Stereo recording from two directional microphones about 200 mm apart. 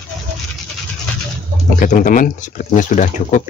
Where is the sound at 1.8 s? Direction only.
40° left (ahead or behind).